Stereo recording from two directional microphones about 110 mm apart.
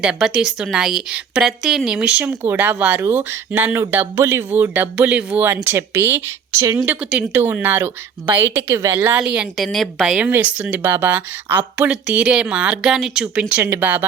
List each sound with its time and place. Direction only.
0.0 s speech: 5° right (ahead or behind); by 6.8 s 30° right (ahead or behind)
6.8 s speech: 10° right (ahead or behind); by 9.0 s 25° right (ahead or behind)
9.0 s a woman's voice: 10° right (ahead or behind)
10.2 s speech: 15° right (ahead or behind)